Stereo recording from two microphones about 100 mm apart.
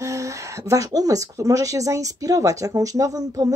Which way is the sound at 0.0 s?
30° right (ahead or behind).